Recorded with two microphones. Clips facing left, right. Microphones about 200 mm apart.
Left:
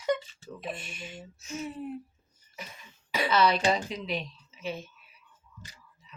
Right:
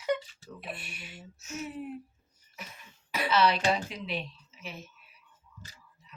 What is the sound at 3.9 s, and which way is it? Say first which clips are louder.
Speech: left 3 dB; 40° left (ahead or behind).